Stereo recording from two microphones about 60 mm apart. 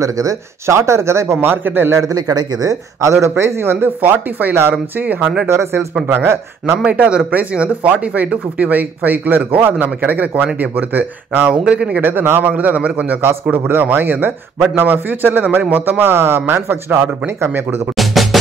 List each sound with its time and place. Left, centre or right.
0.0 s speech: right
2.0 s speech: right
5.5 s speech: right
6.0 s speech: right
6.9 s speech: right
11.6 s speech: centre
12.0 s speech: right
17.9 s music: centre